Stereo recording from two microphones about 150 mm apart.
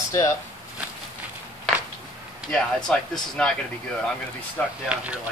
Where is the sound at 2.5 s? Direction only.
5° left (ahead or behind).